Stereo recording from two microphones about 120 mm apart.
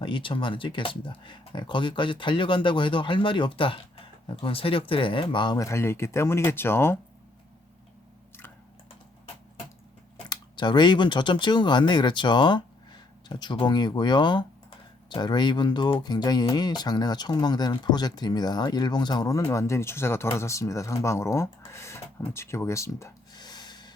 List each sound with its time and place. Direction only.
0.0 s speech: 45° left (ahead or behind)
5.5 s speech: 25° left (ahead or behind)
10.2 s speech: 40° left (ahead or behind); by 23.1 s 25° left (ahead or behind)
23.3 s gasp: 35° left (ahead or behind)